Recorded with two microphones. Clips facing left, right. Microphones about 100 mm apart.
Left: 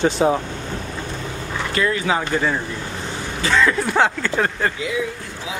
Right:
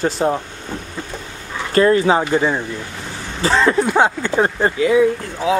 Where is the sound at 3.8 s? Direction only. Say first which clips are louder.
Right 3 dB; 15° right (ahead or behind).